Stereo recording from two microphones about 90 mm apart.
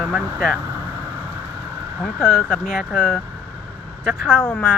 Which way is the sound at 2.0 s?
15° left (ahead or behind).